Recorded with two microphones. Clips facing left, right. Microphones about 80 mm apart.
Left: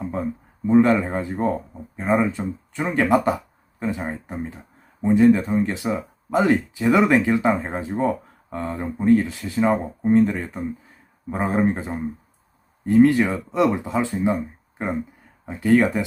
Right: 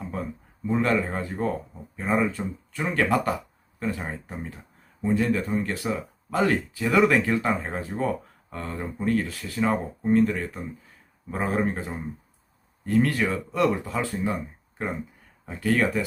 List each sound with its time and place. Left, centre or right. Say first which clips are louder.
0.7 s speech: left 7 dB; centre
15.4 s speech: left 6 dB; left